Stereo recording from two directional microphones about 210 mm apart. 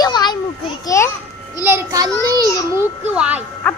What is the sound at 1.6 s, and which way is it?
Child singing, 15° right (ahead or behind).